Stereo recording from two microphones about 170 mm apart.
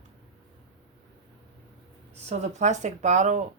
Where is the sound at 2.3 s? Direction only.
40° right (ahead or behind).